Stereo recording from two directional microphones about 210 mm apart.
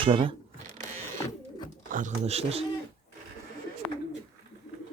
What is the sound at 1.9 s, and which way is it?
Speech, 35° right (ahead or behind).